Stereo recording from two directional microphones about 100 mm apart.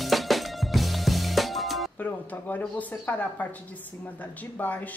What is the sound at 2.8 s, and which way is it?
Speech, 15° left (ahead or behind).